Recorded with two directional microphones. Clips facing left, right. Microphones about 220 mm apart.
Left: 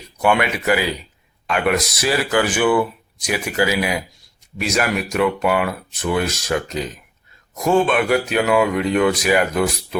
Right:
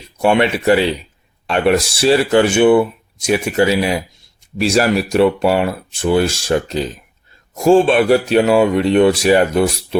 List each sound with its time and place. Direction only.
0.2 s speech: 30° right (ahead or behind)